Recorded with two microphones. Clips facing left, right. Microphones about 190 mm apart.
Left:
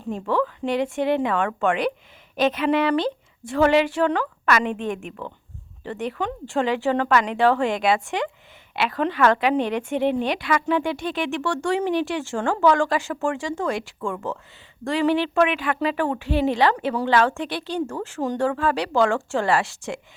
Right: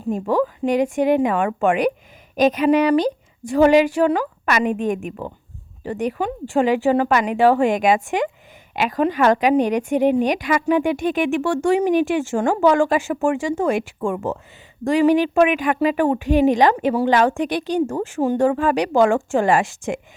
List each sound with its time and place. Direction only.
0.1 s a woman's voice: 15° right (ahead or behind)